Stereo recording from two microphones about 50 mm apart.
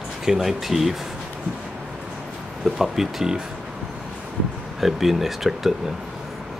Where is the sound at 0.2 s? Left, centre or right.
Centre.